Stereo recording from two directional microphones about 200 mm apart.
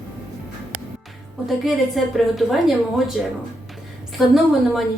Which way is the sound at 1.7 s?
Centre (ahead or behind).